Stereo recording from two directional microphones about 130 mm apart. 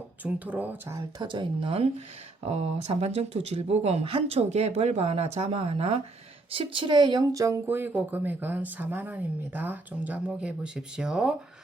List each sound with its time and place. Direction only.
0.2 s speech: 10° right (ahead or behind)
0.9 s speech: 35° right (ahead or behind); by 11.3 s 5° right (ahead or behind)